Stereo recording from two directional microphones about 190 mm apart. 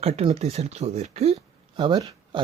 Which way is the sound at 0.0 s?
35° right (ahead or behind).